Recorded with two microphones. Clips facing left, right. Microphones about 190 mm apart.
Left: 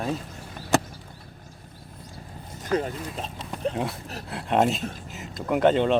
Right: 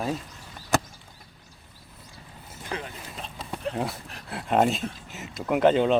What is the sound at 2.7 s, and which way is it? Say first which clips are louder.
Speech: left 9 dB; 45° left (ahead or behind).